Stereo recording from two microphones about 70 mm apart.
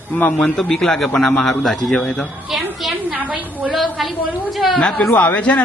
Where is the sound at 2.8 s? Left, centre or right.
Centre.